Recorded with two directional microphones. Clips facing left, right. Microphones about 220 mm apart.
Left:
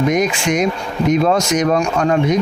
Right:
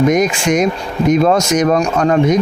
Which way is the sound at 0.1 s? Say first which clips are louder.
Right 3 dB; 45° right (ahead or behind).